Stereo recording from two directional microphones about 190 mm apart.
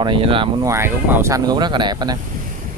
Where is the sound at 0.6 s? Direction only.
15° right (ahead or behind).